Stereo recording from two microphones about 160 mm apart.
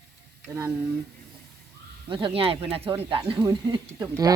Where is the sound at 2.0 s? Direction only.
30° right (ahead or behind).